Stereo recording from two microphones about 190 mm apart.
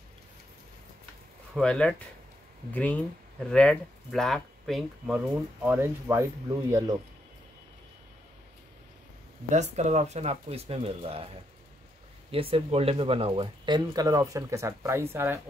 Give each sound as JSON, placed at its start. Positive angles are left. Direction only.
{"t": 1.5, "sound": "speech", "side_deg": 5}
{"t": 9.5, "sound": "speech", "side_deg": -40}
{"t": 12.3, "sound": "speech", "side_deg": -30}